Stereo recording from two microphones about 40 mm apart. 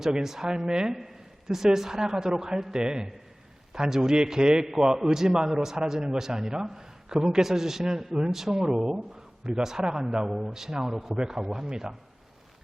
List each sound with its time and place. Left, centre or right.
0.0 s a man's voice: centre